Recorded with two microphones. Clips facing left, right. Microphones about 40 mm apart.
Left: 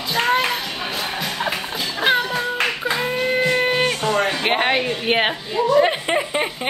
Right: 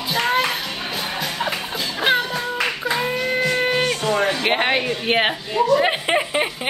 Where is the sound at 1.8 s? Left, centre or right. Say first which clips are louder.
Even; centre.